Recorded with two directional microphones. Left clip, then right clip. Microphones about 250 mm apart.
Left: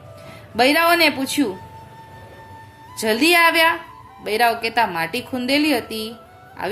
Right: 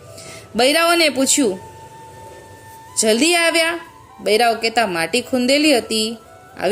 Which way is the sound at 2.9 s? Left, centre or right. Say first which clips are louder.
Even; centre.